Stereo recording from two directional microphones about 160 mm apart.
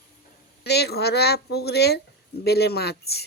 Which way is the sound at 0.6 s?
90° left.